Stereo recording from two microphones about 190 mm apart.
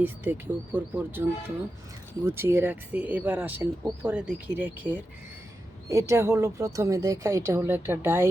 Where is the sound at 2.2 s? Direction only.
10° right (ahead or behind).